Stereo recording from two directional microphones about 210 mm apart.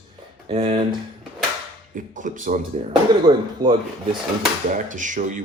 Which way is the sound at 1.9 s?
35° right (ahead or behind).